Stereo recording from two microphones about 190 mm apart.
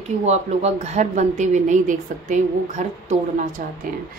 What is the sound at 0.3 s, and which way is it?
A woman's voice, 35° right (ahead or behind).